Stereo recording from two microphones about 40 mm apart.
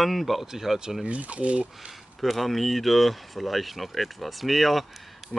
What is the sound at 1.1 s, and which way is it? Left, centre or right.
Speech, right.